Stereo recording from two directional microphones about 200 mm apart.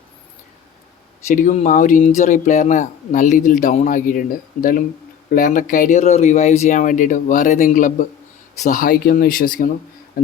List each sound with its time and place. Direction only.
1.3 s speech: 35° left (ahead or behind)